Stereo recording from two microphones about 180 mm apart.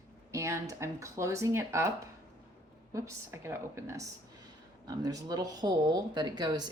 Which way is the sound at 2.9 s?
15° right (ahead or behind).